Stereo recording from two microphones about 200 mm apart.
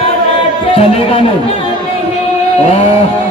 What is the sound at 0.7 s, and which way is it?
Speech, 30° left (ahead or behind).